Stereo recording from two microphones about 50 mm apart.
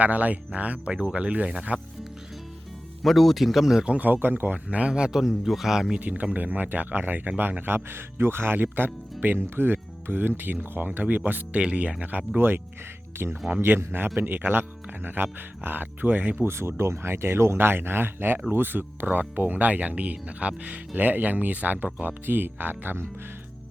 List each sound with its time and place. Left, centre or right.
0.0 s speech: right
3.0 s speech: centre
4.0 s speech: right
4.5 s speech: right
6.0 s speech: right
7.6 s speech: right
13.6 s speech: right
16.4 s speech: right